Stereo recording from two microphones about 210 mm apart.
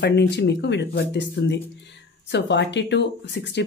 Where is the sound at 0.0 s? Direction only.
55° left (ahead or behind).